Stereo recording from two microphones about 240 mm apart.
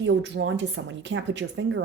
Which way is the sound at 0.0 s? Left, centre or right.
Right.